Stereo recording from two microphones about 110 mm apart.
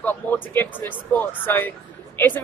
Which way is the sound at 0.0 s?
15° left (ahead or behind).